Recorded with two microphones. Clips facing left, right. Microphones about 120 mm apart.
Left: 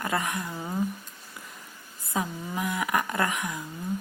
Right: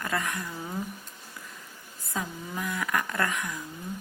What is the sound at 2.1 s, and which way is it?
Speech, 15° left (ahead or behind).